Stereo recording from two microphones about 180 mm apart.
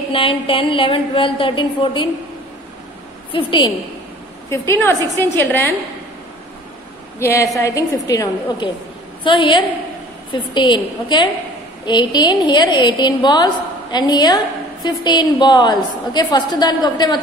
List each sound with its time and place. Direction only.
0.1 s a woman's voice: 30° left (ahead or behind)
3.3 s a woman's voice: 30° left (ahead or behind)
4.5 s a woman's voice: 15° left (ahead or behind)
7.2 s a woman's voice: 15° left (ahead or behind)